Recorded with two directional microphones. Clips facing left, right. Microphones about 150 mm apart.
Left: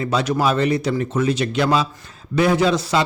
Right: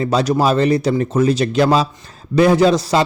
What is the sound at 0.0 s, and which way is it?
Speech, 35° right (ahead or behind).